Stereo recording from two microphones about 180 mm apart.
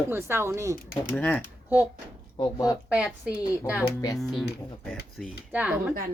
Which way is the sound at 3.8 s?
15° left (ahead or behind).